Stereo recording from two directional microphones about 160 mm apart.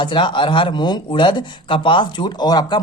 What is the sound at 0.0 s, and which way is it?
Speech, 30° left (ahead or behind).